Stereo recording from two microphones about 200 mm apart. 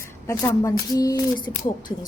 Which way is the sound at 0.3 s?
15° left (ahead or behind).